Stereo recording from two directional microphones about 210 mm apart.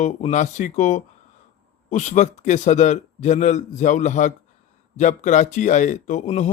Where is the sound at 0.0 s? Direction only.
35° left (ahead or behind).